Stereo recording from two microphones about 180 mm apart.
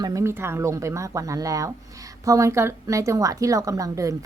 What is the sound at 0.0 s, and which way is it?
A woman's voice, 15° right (ahead or behind).